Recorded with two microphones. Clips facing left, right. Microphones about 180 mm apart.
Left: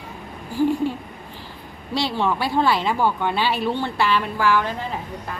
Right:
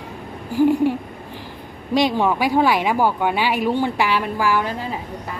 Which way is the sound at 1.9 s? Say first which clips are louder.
Right 5 dB; 15° right (ahead or behind).